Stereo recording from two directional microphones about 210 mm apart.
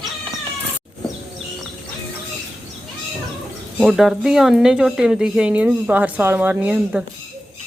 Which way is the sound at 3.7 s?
Centre (ahead or behind).